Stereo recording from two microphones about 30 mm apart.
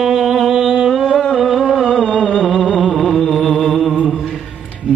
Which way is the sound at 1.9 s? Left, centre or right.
Left.